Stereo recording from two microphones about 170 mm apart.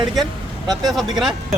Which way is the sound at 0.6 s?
25° right (ahead or behind).